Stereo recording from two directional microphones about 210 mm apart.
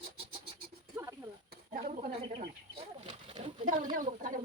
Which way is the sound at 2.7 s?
25° right (ahead or behind).